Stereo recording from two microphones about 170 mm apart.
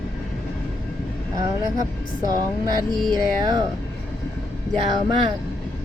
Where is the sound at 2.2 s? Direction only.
25° right (ahead or behind).